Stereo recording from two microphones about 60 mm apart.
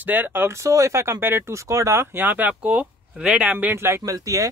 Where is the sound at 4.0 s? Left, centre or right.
Right.